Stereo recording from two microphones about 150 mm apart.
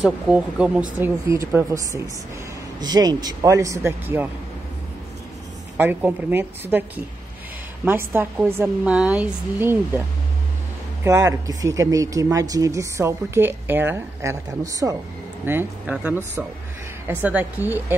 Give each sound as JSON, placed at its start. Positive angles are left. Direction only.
{"t": 0.0, "sound": "a woman's voice", "side_deg": -10}
{"t": 5.8, "sound": "a woman's voice", "side_deg": -10}
{"t": 7.8, "sound": "a woman's voice", "side_deg": -15}
{"t": 11.1, "sound": "speech", "side_deg": -20}
{"t": 15.4, "sound": "a woman's voice", "side_deg": -10}